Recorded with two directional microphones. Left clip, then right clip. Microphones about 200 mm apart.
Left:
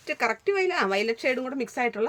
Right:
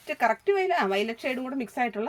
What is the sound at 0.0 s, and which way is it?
Speech, 45° left (ahead or behind).